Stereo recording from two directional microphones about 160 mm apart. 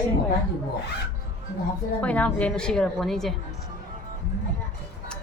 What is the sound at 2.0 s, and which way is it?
Speech, 10° left (ahead or behind).